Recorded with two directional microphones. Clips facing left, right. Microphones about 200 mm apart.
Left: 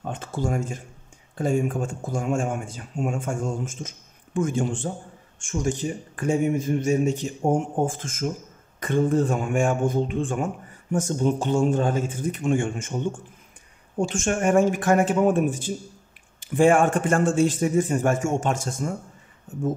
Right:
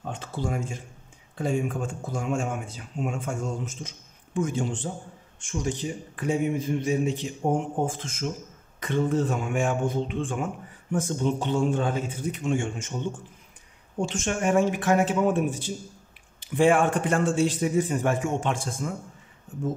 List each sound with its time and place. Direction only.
0.1 s speech: 50° left (ahead or behind)
13.9 s speech: 50° left (ahead or behind)